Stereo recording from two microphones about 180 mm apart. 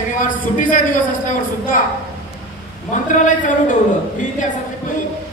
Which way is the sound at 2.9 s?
45° left (ahead or behind).